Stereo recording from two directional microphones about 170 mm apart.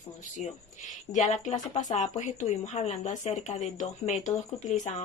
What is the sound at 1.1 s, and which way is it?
A woman's voice, 45° left (ahead or behind).